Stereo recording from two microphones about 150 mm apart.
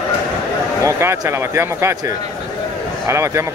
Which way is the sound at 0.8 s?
20° right (ahead or behind).